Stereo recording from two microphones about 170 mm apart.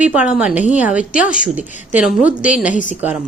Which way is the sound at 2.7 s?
50° left (ahead or behind).